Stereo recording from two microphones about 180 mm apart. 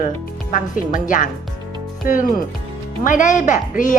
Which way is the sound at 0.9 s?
45° left (ahead or behind).